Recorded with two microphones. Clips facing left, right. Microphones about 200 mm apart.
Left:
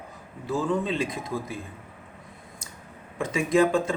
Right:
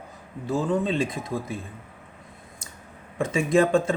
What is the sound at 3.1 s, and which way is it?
Speech, 30° right (ahead or behind).